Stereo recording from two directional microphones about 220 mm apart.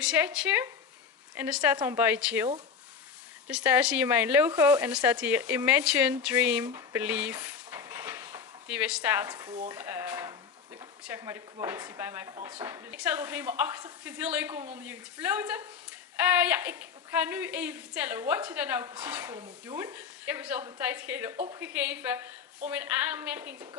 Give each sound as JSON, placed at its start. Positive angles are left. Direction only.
{"t": 0.0, "sound": "a woman's voice", "side_deg": -5}
{"t": 6.6, "sound": "a sound", "side_deg": -10}
{"t": 9.7, "sound": "stir", "side_deg": -10}
{"t": 11.1, "sound": "a woman's voice", "side_deg": -10}
{"t": 12.4, "sound": "speech", "side_deg": -20}
{"t": 12.6, "sound": "a woman's voice", "side_deg": -10}